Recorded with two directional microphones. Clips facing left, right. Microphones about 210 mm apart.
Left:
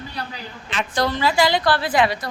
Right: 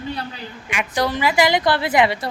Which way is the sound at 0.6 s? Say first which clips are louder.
Right 1 dB; 10° right (ahead or behind).